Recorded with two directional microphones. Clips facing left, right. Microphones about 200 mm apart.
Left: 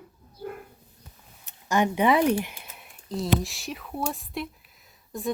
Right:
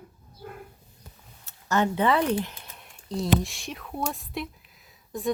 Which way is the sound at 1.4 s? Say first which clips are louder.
Left 1 dB; 15° left (ahead or behind).